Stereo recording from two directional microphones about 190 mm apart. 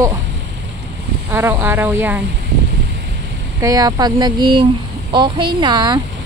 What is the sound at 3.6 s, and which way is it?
Speech, 20° right (ahead or behind).